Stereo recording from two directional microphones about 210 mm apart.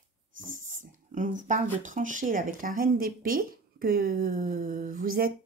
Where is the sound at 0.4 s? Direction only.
40° right (ahead or behind).